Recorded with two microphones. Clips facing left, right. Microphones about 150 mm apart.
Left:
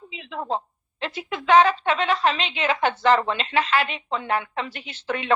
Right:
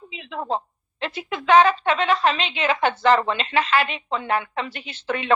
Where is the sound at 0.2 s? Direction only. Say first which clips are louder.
Right 1 dB; 70° right (ahead or behind).